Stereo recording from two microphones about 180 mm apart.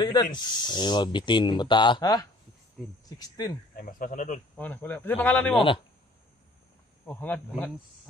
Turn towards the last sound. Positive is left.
turn(degrees=10)  # may be behind; listen again after turning